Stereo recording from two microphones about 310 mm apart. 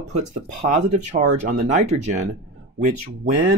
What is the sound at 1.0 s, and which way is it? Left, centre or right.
Speech, right.